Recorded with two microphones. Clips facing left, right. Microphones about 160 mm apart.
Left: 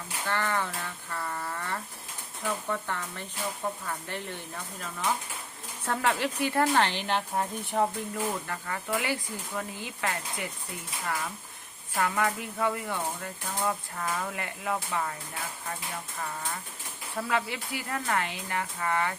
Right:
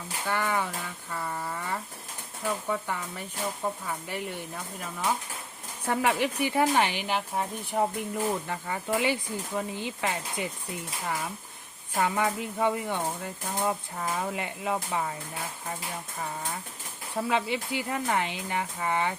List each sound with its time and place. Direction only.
0.3 s speech: 10° right (ahead or behind)
1.1 s a sound: 10° right (ahead or behind)
2.6 s speech: 10° right (ahead or behind)
5.8 s speech: 15° right (ahead or behind)
8.1 s speech: 20° right (ahead or behind)
17.2 s speech: 20° right (ahead or behind)